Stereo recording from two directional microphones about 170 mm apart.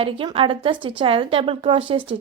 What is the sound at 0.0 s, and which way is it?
A woman's voice, 30° right (ahead or behind).